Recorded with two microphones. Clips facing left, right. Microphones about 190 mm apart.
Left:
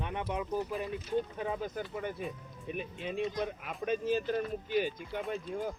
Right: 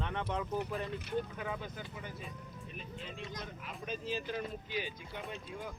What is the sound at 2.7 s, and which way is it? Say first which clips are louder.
Speech: left 11 dB; 65° left (ahead or behind).